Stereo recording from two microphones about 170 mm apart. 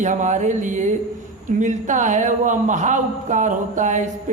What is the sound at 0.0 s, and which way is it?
Speech, 45° right (ahead or behind).